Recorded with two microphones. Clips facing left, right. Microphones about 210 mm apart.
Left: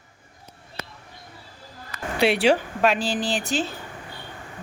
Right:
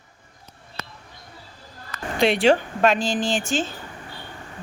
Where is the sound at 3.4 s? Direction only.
35° left (ahead or behind).